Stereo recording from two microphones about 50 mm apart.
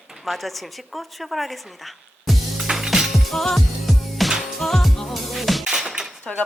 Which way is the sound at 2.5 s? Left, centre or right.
Centre.